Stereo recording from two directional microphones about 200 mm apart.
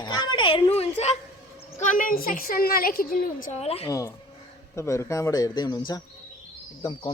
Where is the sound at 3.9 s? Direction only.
15° left (ahead or behind).